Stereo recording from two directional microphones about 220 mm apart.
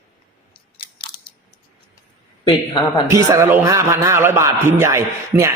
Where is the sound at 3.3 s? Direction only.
15° right (ahead or behind).